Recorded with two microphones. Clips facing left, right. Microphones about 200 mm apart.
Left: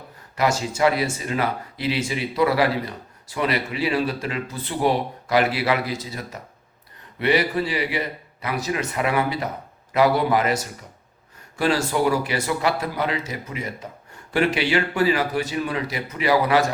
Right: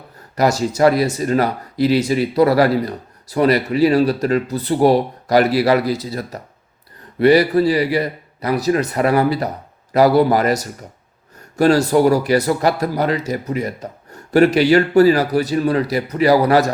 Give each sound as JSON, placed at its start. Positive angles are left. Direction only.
{"t": 0.3, "sound": "speech", "side_deg": -40}